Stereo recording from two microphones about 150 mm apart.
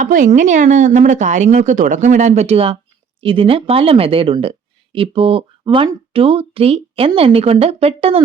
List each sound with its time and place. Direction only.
0.0 s a woman's voice: 60° right (ahead or behind); by 8.2 s 40° right (ahead or behind)